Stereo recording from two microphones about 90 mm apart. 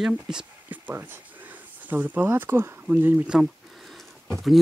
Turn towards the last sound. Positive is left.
turn(degrees=0)  # may be behind; listen again after turning